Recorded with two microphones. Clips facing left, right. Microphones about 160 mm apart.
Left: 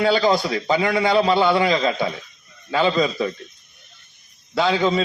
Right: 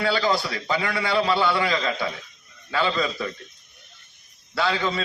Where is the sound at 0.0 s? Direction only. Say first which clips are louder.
Left 5 dB; 20° left (ahead or behind).